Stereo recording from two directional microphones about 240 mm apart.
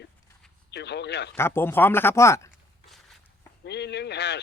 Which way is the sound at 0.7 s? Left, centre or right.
Left.